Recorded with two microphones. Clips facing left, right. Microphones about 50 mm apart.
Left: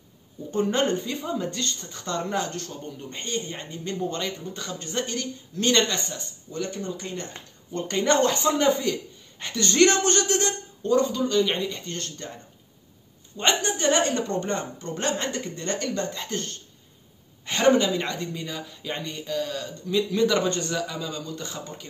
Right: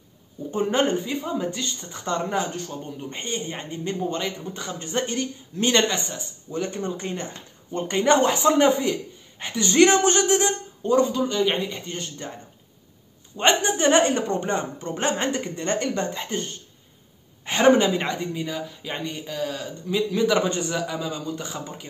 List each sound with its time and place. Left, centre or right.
0.5 s a woman's voice: centre
6.5 s a woman's voice: right
13.4 s a woman's voice: right
18.0 s speech: centre